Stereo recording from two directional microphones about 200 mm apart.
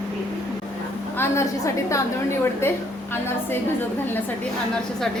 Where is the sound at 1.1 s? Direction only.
10° left (ahead or behind).